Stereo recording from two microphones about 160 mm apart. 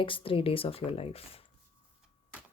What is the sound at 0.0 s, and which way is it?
Speech, 35° left (ahead or behind).